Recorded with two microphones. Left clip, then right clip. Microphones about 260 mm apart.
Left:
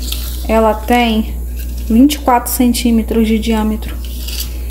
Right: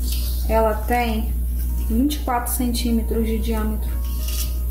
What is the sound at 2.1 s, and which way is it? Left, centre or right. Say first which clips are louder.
Speech: left 11 dB; left.